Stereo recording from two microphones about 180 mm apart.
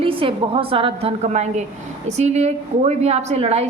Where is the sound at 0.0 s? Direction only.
30° right (ahead or behind).